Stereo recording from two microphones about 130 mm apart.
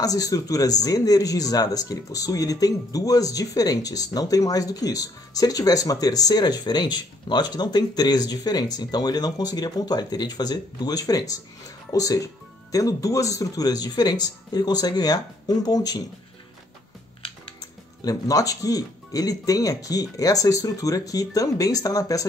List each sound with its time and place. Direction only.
0.0 s speech: 25° left (ahead or behind)
17.6 s speech: 30° left (ahead or behind)